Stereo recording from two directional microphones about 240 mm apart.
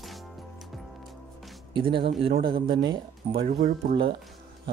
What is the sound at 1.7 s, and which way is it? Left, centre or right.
Speech, right.